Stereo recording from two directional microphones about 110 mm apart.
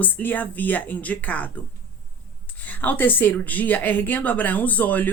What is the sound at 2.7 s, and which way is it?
Speech, 15° left (ahead or behind).